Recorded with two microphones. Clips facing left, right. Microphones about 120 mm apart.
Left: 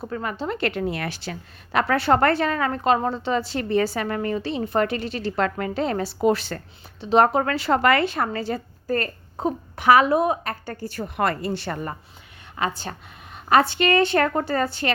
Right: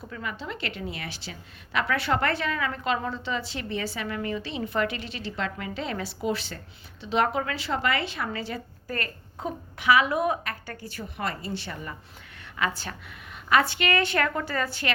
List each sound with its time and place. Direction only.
0.0 s a woman's voice: 45° left (ahead or behind)
7.0 s a woman's voice: 40° left (ahead or behind)
10.1 s a woman's voice: 30° left (ahead or behind)
10.9 s a woman's voice: 60° left (ahead or behind)
12.6 s a woman's voice: 30° left (ahead or behind)